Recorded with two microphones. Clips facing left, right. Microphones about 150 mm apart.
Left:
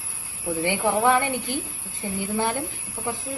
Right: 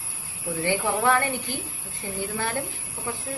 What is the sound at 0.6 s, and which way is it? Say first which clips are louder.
A woman's voice: left 2 dB; 20° left (ahead or behind).